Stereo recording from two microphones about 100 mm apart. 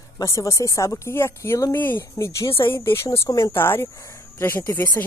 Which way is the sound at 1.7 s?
20° left (ahead or behind).